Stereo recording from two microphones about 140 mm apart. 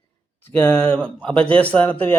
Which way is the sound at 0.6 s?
10° left (ahead or behind).